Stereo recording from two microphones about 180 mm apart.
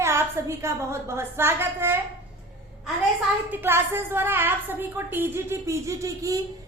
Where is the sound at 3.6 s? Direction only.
15° right (ahead or behind).